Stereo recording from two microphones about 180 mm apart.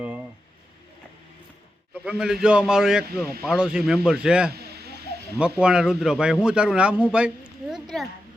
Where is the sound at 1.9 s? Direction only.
5° right (ahead or behind).